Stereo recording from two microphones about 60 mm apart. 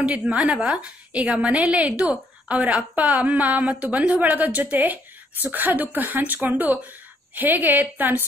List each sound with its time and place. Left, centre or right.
0.0 s a woman's voice: centre